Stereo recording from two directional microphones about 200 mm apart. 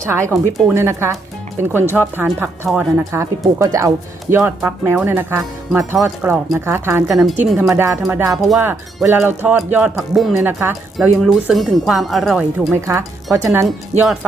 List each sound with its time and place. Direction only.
0.0 s speech: 15° right (ahead or behind)
7.5 s speech: centre (ahead or behind)
8.0 s speech: 10° right (ahead or behind)
8.4 s speech: centre (ahead or behind)
8.6 s speech: 10° right (ahead or behind)
12.7 s speech: 15° right (ahead or behind)
13.9 s speech: 35° right (ahead or behind)